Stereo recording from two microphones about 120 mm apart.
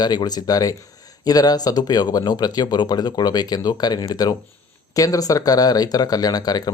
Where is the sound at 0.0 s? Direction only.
35° left (ahead or behind).